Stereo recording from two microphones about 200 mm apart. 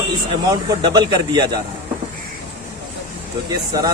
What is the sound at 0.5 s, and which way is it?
Speech, 20° right (ahead or behind).